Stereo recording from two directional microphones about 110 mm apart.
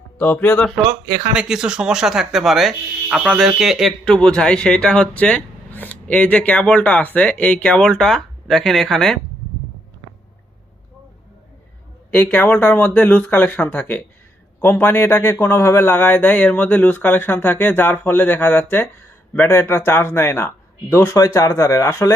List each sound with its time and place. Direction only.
0.2 s speech: 15° left (ahead or behind)
1.3 s speech: 5° right (ahead or behind)
12.1 s speech: 15° left (ahead or behind)